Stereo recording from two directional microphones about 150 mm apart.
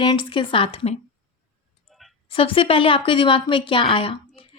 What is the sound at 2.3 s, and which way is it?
Speech, 35° left (ahead or behind).